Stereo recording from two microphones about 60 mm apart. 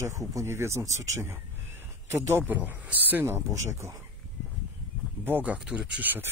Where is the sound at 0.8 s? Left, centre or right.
Right.